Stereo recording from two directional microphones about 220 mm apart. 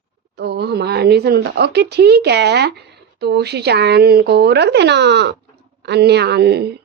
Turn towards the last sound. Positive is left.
turn(degrees=-50)  # may be behind; listen again after turning